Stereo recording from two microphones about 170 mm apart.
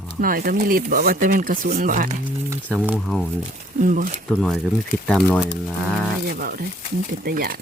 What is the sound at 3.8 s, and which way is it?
Speech, 50° right (ahead or behind).